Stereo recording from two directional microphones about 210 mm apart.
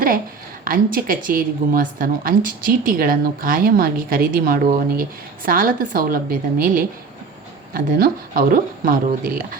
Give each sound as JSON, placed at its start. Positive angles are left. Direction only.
{"t": 0.6, "sound": "speech", "side_deg": -45}